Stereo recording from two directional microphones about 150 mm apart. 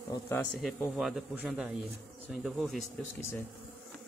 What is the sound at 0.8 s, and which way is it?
Speech, 5° right (ahead or behind).